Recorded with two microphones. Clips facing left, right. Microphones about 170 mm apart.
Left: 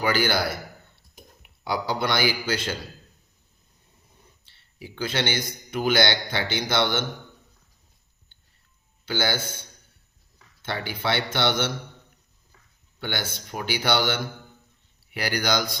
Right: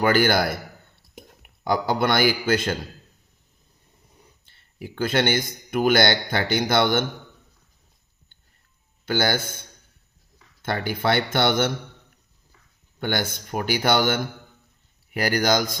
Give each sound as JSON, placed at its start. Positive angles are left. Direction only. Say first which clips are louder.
{"t": 0.0, "sound": "a man's voice", "louder": "right 4 dB", "side_deg": -50}
{"t": 4.4, "sound": "a sound", "louder": "right 5 dB", "side_deg": -50}
{"t": 5.7, "sound": "speech", "louder": "right 4 dB", "side_deg": -50}
{"t": 9.0, "sound": "speech", "louder": "right 4 dB", "side_deg": -50}
{"t": 10.6, "sound": "speech", "louder": "right 5 dB", "side_deg": -50}
{"t": 13.0, "sound": "speech", "louder": "right 5 dB", "side_deg": -50}